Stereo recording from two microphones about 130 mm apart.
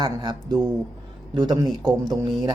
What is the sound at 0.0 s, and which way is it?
Speech, 35° right (ahead or behind).